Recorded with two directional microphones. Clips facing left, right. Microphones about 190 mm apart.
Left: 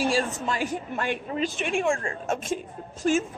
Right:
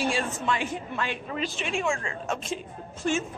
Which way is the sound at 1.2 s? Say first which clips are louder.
Left 4 dB; 35° left (ahead or behind).